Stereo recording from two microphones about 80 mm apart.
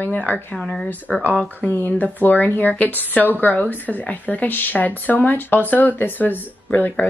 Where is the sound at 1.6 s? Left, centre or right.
Centre.